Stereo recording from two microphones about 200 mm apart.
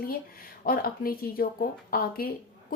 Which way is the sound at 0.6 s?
50° left (ahead or behind).